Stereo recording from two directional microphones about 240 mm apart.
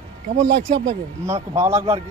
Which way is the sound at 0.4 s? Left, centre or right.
Right.